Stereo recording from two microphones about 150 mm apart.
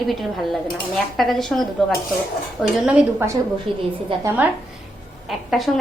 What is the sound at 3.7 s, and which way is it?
Speech, 35° right (ahead or behind).